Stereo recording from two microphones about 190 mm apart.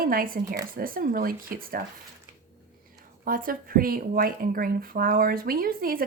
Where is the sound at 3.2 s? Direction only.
50° right (ahead or behind).